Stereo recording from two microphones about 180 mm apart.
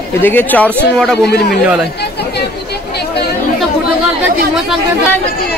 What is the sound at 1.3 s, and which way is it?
Speech, 60° left (ahead or behind).